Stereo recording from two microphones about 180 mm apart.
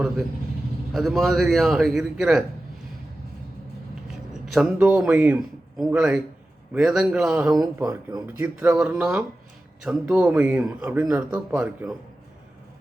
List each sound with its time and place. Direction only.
0.9 s a man's voice: centre (ahead or behind)
4.5 s a man's voice: 5° right (ahead or behind)
7.5 s speech: 20° right (ahead or behind)
8.4 s a man's voice: 5° right (ahead or behind)